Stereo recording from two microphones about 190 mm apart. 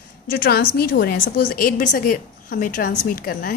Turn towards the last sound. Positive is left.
turn(degrees=50)  # may be behind; listen again after turning